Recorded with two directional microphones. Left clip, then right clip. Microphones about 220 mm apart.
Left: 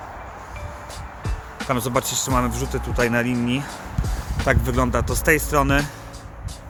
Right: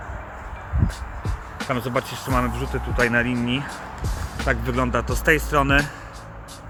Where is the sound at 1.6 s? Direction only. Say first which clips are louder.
Left 2 dB; centre (ahead or behind).